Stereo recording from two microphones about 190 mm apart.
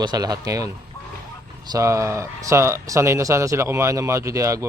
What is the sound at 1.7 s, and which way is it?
Speech, 15° right (ahead or behind).